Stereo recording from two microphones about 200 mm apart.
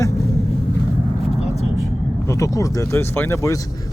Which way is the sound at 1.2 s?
30° left (ahead or behind).